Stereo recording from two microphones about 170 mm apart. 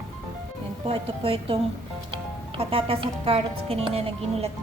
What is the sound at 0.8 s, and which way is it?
Speech, 35° right (ahead or behind).